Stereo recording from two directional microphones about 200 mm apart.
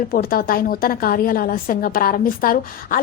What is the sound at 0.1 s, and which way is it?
A woman's voice, 45° left (ahead or behind).